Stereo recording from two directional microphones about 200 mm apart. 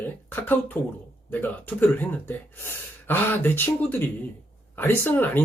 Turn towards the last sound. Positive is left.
turn(degrees=10)  # may be behind; listen again after turning